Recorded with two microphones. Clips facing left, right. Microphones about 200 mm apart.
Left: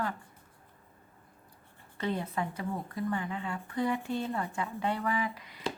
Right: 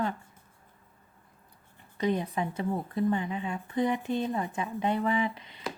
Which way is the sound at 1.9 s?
15° right (ahead or behind).